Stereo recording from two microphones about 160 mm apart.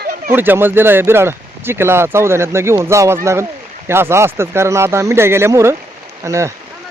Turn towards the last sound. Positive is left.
turn(degrees=-20)  # may be behind; listen again after turning